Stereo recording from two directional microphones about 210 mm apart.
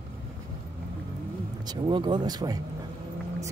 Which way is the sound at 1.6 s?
20° right (ahead or behind).